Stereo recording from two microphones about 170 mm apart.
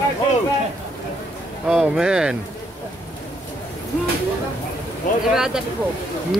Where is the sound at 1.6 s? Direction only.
5° right (ahead or behind).